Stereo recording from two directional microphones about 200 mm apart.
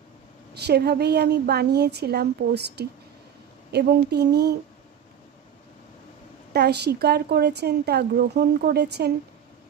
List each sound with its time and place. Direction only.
0.6 s speech: 55° right (ahead or behind)
6.5 s speech: 55° right (ahead or behind)